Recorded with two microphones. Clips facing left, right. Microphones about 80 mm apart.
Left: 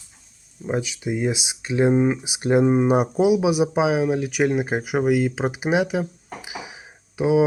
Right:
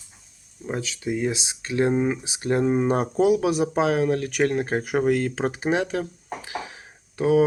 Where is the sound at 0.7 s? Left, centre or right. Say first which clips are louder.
Left 3 dB; centre.